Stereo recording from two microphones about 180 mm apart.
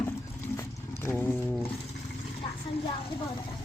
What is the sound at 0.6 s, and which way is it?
Dog, 15° left (ahead or behind).